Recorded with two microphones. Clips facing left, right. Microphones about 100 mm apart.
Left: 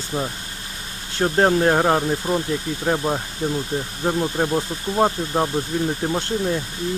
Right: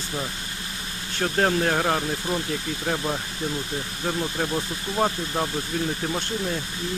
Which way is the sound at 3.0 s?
40° left (ahead or behind).